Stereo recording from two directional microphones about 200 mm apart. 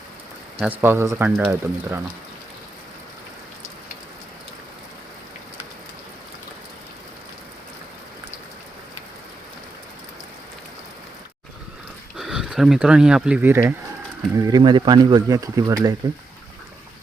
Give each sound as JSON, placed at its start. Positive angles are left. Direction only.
{"t": 0.6, "sound": "speech", "side_deg": -10}
{"t": 12.1, "sound": "speech", "side_deg": 0}